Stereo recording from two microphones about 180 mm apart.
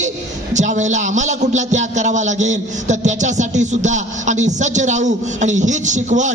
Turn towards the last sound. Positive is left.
turn(degrees=-40)  # may be behind; listen again after turning